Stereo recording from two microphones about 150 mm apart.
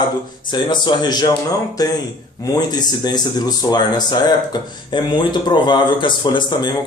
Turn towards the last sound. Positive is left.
turn(degrees=30)  # may be behind; listen again after turning